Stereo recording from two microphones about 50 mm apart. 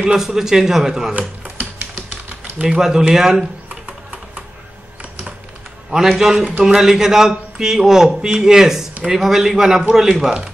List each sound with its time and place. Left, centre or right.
0.1 s a man's voice: centre
1.1 s a sound: right
2.6 s a man's voice: centre
5.9 s a man's voice: centre